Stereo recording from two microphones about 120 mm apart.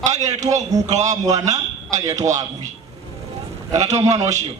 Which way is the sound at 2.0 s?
30° right (ahead or behind).